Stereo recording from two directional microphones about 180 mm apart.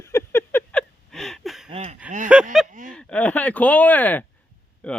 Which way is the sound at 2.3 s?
5° right (ahead or behind).